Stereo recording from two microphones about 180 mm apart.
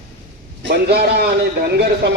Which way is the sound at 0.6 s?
65° right (ahead or behind).